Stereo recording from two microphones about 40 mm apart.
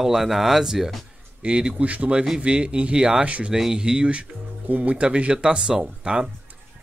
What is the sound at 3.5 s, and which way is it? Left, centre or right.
Speech, centre.